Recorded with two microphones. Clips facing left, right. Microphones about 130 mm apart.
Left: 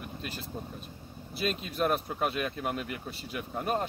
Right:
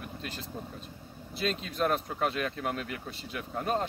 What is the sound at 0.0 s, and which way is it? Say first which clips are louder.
Speech: even; 10° left (ahead or behind).